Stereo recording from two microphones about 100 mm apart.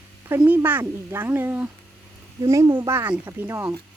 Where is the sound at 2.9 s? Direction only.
25° right (ahead or behind).